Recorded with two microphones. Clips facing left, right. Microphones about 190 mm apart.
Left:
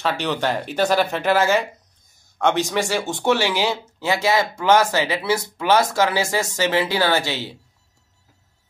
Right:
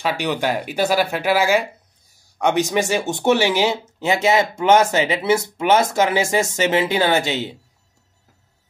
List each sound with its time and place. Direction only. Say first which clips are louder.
0.0 s speech: right 1 dB; 10° right (ahead or behind)